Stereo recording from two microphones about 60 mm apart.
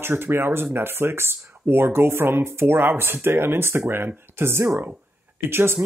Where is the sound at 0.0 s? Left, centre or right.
Right.